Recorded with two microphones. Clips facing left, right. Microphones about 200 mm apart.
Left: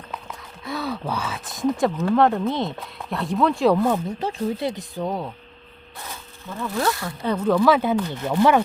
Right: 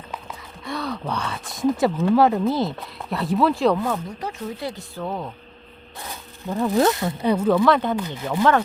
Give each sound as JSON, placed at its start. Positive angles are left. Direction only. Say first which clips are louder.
{"t": 0.1, "sound": "speech", "louder": "even", "side_deg": 0}
{"t": 3.8, "sound": "speech", "louder": "left 4 dB", "side_deg": 25}
{"t": 6.7, "sound": "speech", "louder": "right 4 dB", "side_deg": -20}
{"t": 7.6, "sound": "speech", "louder": "left 1 dB", "side_deg": 5}
{"t": 7.9, "sound": "speech", "louder": "left 3 dB", "side_deg": -10}
{"t": 8.3, "sound": "speech", "louder": "left 1 dB", "side_deg": 10}